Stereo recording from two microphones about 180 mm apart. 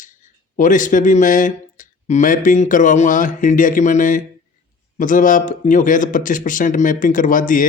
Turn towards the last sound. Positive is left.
turn(degrees=50)  # may be behind; listen again after turning